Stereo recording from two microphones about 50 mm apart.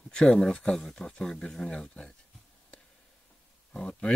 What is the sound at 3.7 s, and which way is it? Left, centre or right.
Speech, centre.